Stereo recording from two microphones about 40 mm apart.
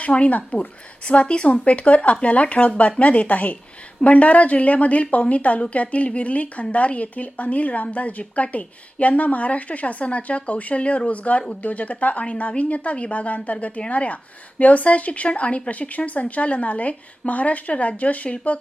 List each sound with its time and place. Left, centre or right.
0.0 s a woman's voice: left